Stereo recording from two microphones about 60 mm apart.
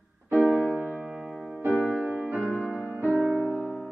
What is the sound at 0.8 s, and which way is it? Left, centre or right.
Music, centre.